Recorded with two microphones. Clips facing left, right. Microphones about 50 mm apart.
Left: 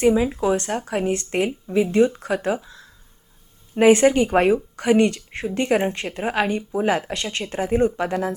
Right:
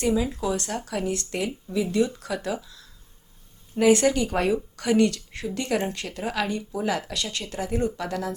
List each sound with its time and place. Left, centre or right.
0.0 s speech: left